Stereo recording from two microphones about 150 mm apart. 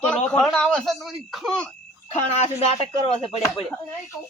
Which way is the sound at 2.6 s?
40° left (ahead or behind).